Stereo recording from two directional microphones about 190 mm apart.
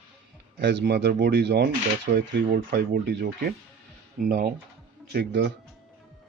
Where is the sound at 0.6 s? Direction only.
60° right (ahead or behind).